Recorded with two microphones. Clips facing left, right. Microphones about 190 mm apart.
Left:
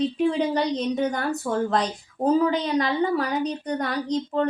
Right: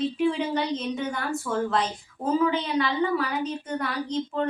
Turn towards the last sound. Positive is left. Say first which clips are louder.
# left 3 dB
turn(degrees=40)  # may be behind; listen again after turning